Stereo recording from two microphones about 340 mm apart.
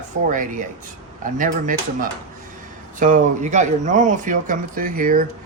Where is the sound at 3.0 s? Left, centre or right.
Right.